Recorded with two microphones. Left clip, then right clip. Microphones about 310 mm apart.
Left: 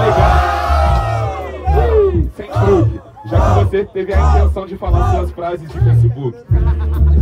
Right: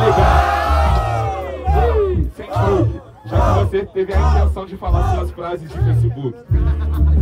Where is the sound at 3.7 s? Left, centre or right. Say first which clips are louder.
Left 2 dB; centre.